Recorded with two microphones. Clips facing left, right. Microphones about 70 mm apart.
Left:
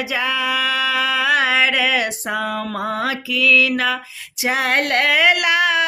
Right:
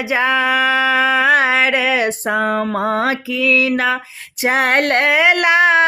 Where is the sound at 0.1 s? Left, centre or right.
Right.